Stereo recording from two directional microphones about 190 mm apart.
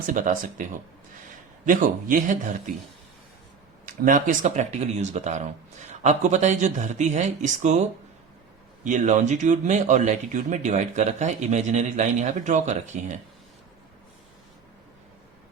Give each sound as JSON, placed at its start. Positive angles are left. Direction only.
{"t": 0.0, "sound": "a man's voice", "side_deg": -45}
{"t": 1.6, "sound": "a man's voice", "side_deg": -45}
{"t": 3.8, "sound": "speech", "side_deg": -45}